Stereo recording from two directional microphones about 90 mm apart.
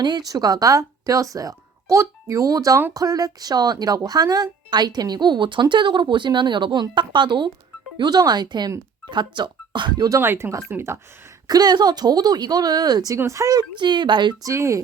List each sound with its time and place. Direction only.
0.0 s speech: 50° right (ahead or behind)
10.2 s speech: 25° right (ahead or behind)
11.4 s speech: 45° right (ahead or behind)
13.1 s speech: 30° right (ahead or behind)
13.7 s speech: 55° right (ahead or behind)
14.4 s speech: 30° right (ahead or behind)